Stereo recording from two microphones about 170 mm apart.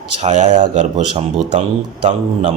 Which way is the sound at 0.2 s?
40° right (ahead or behind).